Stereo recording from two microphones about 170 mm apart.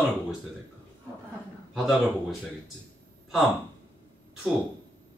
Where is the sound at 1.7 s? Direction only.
Centre (ahead or behind).